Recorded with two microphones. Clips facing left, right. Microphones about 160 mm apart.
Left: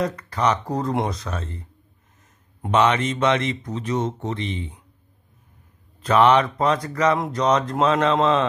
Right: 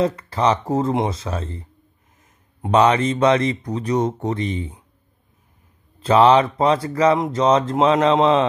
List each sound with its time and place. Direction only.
0.0 s speech: 25° right (ahead or behind)
2.7 s speech: 35° right (ahead or behind)
5.9 s speech: 30° right (ahead or behind)